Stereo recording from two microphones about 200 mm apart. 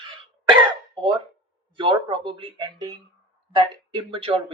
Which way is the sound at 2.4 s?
25° right (ahead or behind).